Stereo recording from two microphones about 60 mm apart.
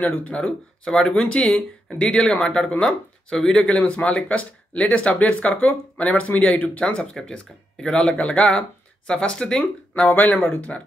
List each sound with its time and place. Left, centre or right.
0.0 s speech: left
10.1 s speech: left